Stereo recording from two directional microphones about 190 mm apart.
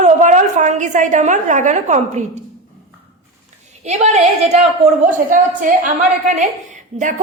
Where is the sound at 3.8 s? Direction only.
35° right (ahead or behind).